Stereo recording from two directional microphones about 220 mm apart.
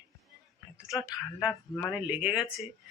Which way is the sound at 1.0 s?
Centre (ahead or behind).